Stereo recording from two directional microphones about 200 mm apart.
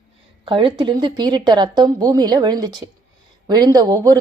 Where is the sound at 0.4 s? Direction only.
25° right (ahead or behind).